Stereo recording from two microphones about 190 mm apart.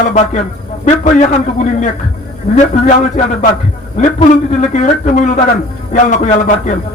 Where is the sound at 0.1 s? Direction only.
40° left (ahead or behind).